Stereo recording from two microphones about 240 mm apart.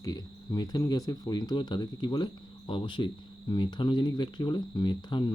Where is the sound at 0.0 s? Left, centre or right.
Centre.